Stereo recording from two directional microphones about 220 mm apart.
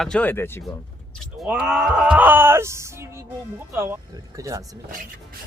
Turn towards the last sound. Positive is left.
turn(degrees=-15)  # may be behind; listen again after turning